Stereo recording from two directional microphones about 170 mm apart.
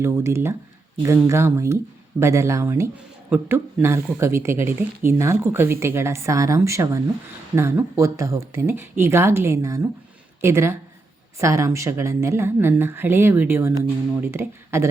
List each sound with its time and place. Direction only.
0.0 s speech: 15° right (ahead or behind)